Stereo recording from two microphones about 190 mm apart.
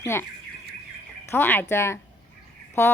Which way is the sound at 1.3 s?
10° left (ahead or behind).